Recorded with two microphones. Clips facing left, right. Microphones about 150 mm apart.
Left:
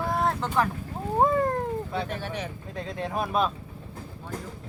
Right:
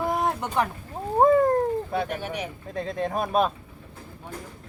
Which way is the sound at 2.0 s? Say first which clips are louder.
Right 2 dB; 15° right (ahead or behind).